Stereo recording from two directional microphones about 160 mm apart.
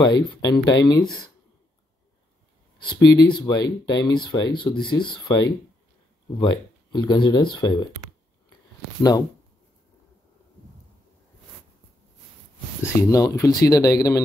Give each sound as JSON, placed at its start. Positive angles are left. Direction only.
{"t": 0.1, "sound": "speech", "side_deg": 25}
{"t": 2.8, "sound": "speech", "side_deg": 30}
{"t": 12.8, "sound": "speech", "side_deg": 20}